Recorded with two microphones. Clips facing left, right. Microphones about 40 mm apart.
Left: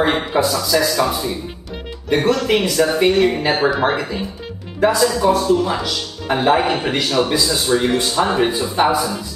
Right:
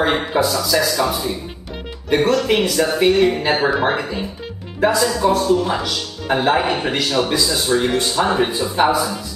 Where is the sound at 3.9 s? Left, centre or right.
Centre.